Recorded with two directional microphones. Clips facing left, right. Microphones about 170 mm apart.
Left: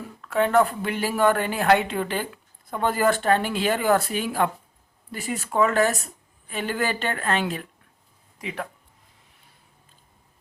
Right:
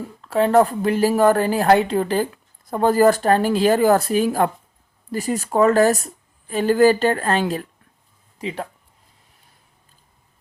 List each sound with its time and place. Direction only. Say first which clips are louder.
0.2 s speech: right 4 dB; 35° right (ahead or behind)